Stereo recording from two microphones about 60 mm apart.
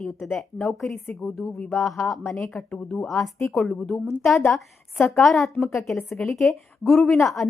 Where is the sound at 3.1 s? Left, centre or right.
Centre.